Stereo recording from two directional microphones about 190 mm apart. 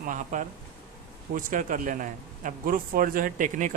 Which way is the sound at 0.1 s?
40° right (ahead or behind).